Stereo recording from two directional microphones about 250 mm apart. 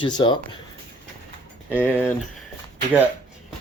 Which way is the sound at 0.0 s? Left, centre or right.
Centre.